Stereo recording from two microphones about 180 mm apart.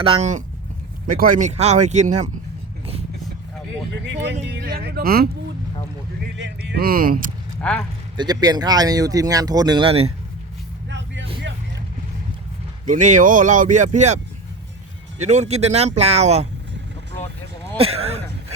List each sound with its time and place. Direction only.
0.0 s speech: 35° right (ahead or behind)
4.0 s speech: 80° right; by 5.3 s 55° right (ahead or behind)
6.3 s speech: 75° right (ahead or behind); by 7.3 s 55° right (ahead or behind)
7.6 s speech: 5° left (ahead or behind)
8.1 s speech: 25° right (ahead or behind)
10.8 s vehicle: 85° right
12.8 s speech: 45° right (ahead or behind)
15.2 s speech: 40° right (ahead or behind)
17.7 s speech: 35° right (ahead or behind)